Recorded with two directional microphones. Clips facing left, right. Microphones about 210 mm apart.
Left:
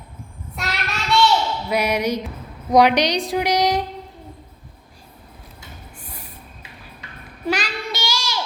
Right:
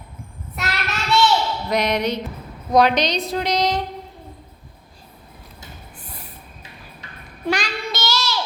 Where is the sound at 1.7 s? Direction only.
10° left (ahead or behind).